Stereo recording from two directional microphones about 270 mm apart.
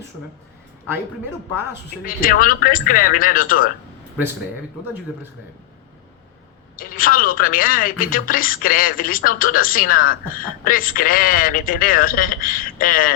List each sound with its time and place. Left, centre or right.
2.0 s a woman's voice: left
6.7 s a woman's voice: left